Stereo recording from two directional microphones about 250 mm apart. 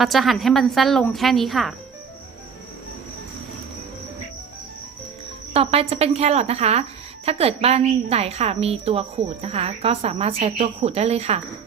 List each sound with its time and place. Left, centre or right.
0.0 s a woman's voice: centre
5.5 s a woman's voice: right